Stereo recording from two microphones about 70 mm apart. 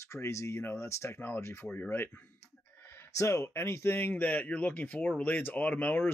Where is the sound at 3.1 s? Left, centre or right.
Left.